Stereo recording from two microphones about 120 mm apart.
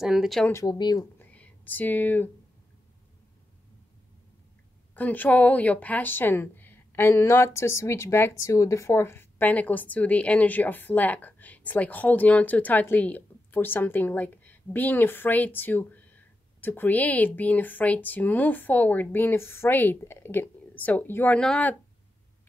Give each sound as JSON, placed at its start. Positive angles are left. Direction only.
{"t": 0.0, "sound": "speech", "side_deg": 0}
{"t": 0.7, "sound": "speech", "side_deg": 35}
{"t": 1.2, "sound": "whispering", "side_deg": 15}
{"t": 4.9, "sound": "speech", "side_deg": 15}